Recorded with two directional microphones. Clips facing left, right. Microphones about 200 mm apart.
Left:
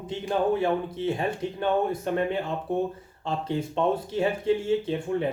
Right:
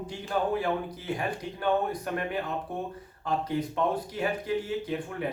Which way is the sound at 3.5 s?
25° left (ahead or behind).